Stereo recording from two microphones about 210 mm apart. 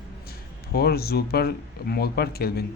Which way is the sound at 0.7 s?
50° left (ahead or behind).